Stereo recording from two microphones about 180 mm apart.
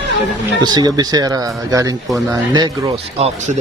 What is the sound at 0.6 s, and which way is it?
Speech, 25° right (ahead or behind).